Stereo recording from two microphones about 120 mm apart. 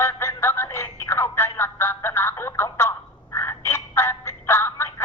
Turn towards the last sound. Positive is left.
turn(degrees=20)  # may be behind; listen again after turning